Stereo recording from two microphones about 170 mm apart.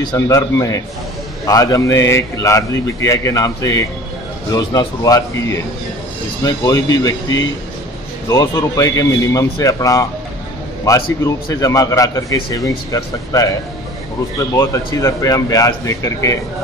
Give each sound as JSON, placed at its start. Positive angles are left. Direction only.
{"t": 0.0, "sound": "a man's voice", "side_deg": 20}
{"t": 14.6, "sound": "a man's voice", "side_deg": 20}